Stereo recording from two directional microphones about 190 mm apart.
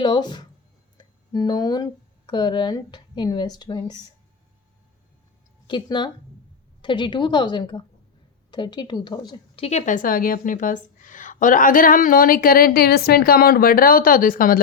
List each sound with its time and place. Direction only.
0.0 s a woman's voice: 25° left (ahead or behind)
5.6 s a woman's voice: 25° left (ahead or behind)
9.6 s a woman's voice: 40° left (ahead or behind)